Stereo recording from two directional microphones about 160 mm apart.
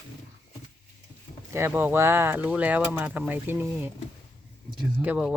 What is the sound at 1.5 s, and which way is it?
Speech, 15° right (ahead or behind).